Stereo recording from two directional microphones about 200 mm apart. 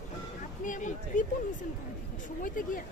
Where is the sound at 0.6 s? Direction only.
40° left (ahead or behind).